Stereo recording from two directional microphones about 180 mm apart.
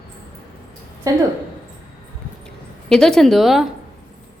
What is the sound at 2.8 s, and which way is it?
Speech, 5° left (ahead or behind).